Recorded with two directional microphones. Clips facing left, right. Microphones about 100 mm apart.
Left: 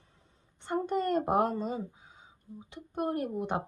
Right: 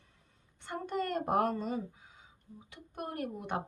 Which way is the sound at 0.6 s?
30° left (ahead or behind).